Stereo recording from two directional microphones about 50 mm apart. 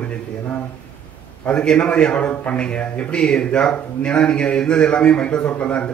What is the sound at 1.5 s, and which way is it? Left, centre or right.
Speech, left.